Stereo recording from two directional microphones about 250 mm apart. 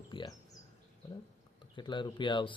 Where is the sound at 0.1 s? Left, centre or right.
Centre.